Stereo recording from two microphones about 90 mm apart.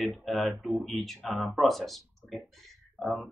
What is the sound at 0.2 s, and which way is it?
Speech, centre (ahead or behind).